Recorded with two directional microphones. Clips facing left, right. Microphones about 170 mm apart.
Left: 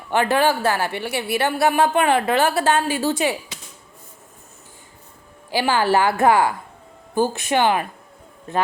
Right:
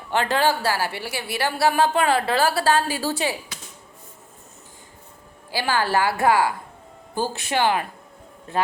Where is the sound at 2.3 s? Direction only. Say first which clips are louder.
Left 2 dB; 35° right (ahead or behind).